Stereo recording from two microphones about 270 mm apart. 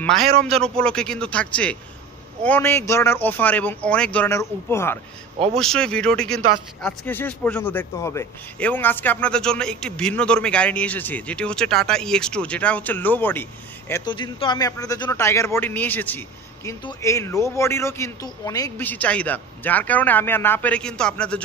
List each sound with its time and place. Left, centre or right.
0.5 s a man's voice: centre